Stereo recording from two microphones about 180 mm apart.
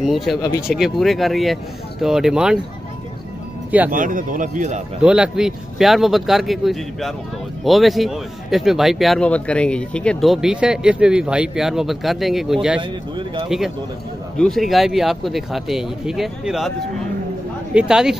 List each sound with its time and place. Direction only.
0.0 s speech: centre (ahead or behind)
3.9 s a man's voice: 45° right (ahead or behind)
5.0 s speech: 5° right (ahead or behind)
17.7 s speech: 5° right (ahead or behind)